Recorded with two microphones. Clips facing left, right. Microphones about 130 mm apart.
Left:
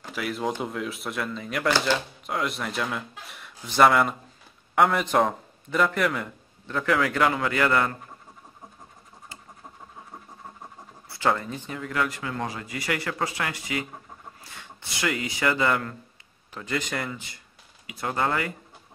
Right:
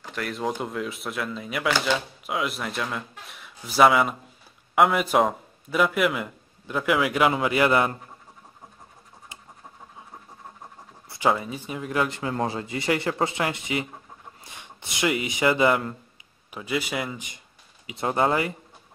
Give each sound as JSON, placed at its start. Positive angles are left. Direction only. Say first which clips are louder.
{"t": 0.1, "sound": "a man's voice", "louder": "even", "side_deg": 0}
{"t": 11.1, "sound": "a man's voice", "louder": "right 2 dB", "side_deg": -15}
{"t": 17.1, "sound": "a man's voice", "louder": "right 1 dB", "side_deg": -20}